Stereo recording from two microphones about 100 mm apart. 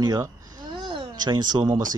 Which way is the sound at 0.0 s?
40° right (ahead or behind).